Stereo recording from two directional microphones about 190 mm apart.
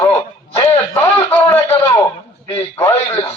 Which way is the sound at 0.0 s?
20° left (ahead or behind).